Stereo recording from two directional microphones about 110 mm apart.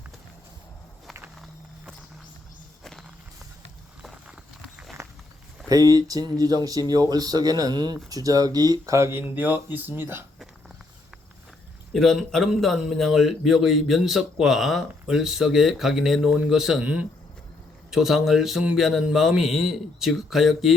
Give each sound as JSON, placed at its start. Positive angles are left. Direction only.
{"t": 1.4, "sound": "walk", "side_deg": 0}
{"t": 4.0, "sound": "walk", "side_deg": -5}
{"t": 5.0, "sound": "walk", "side_deg": -30}
{"t": 5.6, "sound": "speech", "side_deg": -35}
{"t": 11.9, "sound": "a man's voice", "side_deg": 0}